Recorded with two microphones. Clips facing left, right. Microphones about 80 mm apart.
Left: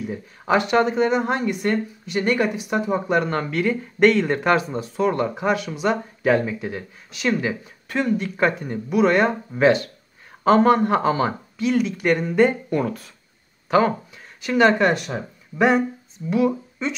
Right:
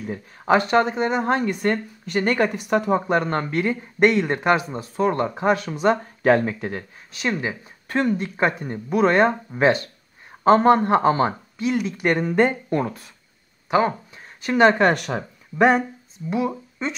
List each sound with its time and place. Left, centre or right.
0.0 s speech: right
4.9 s speech: right
7.1 s speech: right
14.4 s speech: right
15.0 s speech: right
15.5 s speech: right
16.3 s speech: right